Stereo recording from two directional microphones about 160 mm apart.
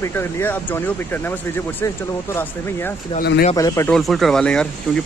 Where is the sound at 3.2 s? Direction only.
75° left (ahead or behind).